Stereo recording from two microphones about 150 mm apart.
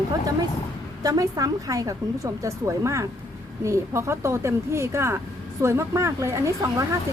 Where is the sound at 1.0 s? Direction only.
25° right (ahead or behind).